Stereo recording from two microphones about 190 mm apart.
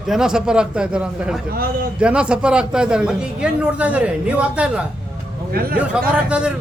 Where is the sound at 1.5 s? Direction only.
50° right (ahead or behind).